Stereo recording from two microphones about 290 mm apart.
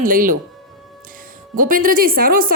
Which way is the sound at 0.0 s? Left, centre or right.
Right.